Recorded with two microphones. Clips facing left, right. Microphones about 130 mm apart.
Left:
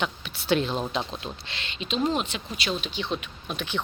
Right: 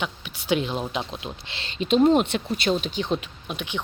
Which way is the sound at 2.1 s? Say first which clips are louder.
Right 8 dB; 55° right (ahead or behind).